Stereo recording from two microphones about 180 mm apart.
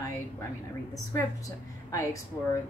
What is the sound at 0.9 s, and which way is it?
Speech, 15° left (ahead or behind).